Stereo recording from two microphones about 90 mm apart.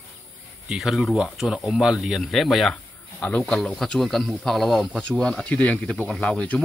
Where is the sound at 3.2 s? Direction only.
20° left (ahead or behind).